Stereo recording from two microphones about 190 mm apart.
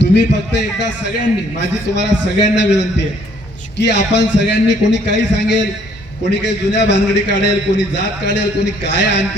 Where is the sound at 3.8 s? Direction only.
65° left (ahead or behind).